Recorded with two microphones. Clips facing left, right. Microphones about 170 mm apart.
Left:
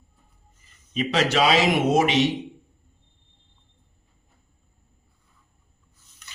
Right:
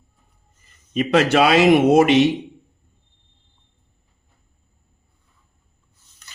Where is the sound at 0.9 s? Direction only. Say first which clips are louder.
Right 6 dB; 55° right (ahead or behind).